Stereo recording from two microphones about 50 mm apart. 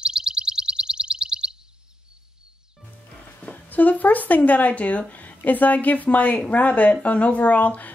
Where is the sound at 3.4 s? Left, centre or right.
Left.